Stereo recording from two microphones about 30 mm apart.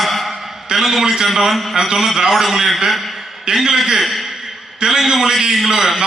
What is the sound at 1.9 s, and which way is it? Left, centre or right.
A man's voice, centre.